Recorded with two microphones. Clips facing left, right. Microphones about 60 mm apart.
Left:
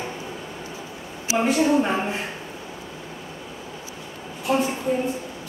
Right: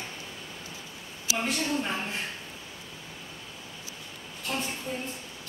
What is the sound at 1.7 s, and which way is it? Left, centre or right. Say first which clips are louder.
Speech: left 10 dB; left.